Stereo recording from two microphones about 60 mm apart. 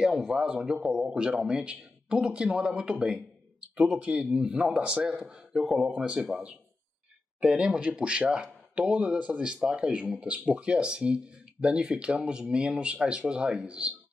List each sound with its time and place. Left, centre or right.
0.2 s a man's voice: centre
1.0 s speech: centre
7.3 s speech: centre